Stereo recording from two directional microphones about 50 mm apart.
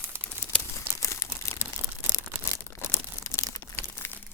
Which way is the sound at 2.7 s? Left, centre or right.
Left.